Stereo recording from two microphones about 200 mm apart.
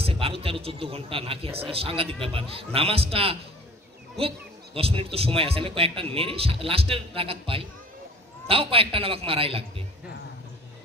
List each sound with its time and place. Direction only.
0.0 s a man's voice: 30° right (ahead or behind)
4.7 s a man's voice: 30° right (ahead or behind)